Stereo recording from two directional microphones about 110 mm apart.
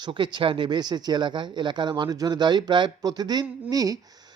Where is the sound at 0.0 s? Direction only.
45° right (ahead or behind).